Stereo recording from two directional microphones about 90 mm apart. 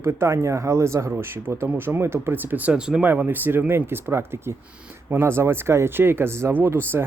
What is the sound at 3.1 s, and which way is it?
Speech, 25° right (ahead or behind).